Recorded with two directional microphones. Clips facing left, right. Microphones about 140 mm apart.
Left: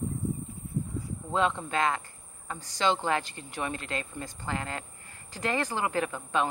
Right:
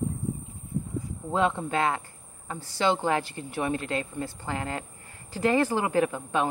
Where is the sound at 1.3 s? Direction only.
20° right (ahead or behind).